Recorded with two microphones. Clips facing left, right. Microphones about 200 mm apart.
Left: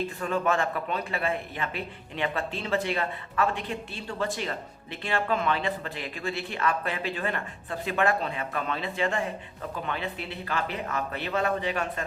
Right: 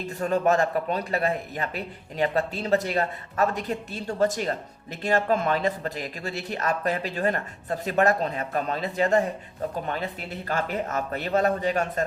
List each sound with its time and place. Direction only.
0.2 s speech: 40° right (ahead or behind)